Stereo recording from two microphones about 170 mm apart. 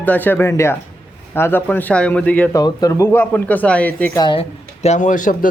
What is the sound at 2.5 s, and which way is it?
Speech, 25° left (ahead or behind).